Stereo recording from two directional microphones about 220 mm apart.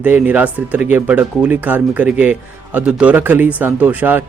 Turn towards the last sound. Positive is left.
turn(degrees=-5)  # may be behind; listen again after turning